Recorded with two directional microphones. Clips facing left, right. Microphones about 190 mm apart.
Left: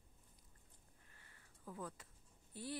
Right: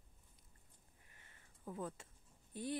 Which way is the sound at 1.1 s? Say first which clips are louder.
Right 1 dB; 20° right (ahead or behind).